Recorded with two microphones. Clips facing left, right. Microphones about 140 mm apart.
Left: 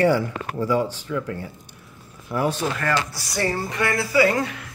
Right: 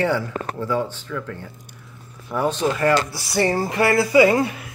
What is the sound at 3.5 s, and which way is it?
Speech, 30° right (ahead or behind).